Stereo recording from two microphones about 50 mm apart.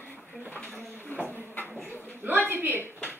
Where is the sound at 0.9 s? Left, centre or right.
Left.